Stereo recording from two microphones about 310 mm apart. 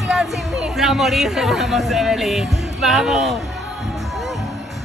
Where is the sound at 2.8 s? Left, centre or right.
Centre.